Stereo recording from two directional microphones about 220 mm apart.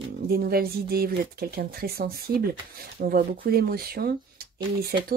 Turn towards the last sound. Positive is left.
turn(degrees=-45)  # may be behind; listen again after turning